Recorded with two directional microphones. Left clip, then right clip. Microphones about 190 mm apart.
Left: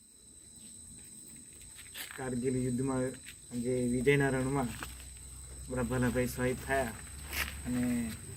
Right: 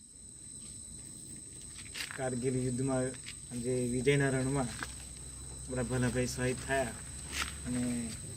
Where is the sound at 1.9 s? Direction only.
20° right (ahead or behind).